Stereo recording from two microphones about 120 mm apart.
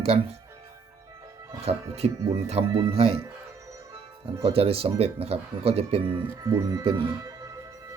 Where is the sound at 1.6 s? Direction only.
60° right (ahead or behind).